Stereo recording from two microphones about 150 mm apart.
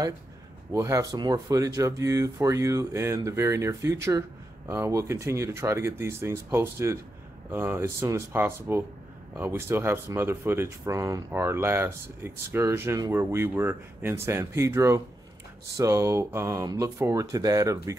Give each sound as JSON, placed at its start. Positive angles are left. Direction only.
{"t": 0.7, "sound": "speech", "side_deg": -20}